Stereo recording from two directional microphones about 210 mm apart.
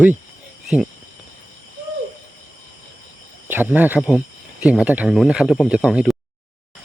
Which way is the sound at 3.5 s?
10° right (ahead or behind).